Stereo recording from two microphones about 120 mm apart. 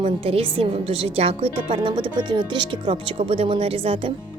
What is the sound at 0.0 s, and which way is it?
Speech, 50° right (ahead or behind).